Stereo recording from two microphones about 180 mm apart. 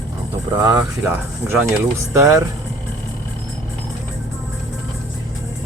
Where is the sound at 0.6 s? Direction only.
20° right (ahead or behind).